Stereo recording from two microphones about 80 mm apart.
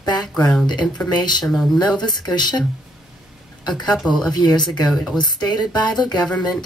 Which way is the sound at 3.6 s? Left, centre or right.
Left.